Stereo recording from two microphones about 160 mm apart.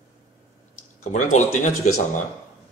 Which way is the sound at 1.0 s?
55° left (ahead or behind).